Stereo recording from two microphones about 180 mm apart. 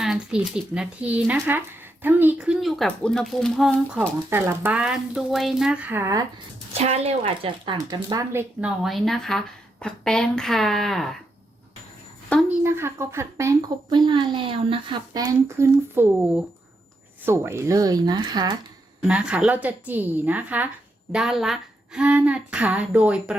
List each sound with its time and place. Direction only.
0.0 s a woman's voice: 5° right (ahead or behind)
6.7 s speech: 35° right (ahead or behind); by 8.7 s 15° right (ahead or behind)
8.8 s speech: centre (ahead or behind)
12.5 s speech: 15° right (ahead or behind)
19.0 s a woman's voice: 5° right (ahead or behind)